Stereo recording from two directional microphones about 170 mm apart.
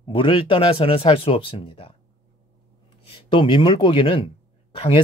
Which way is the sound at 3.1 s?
30° left (ahead or behind).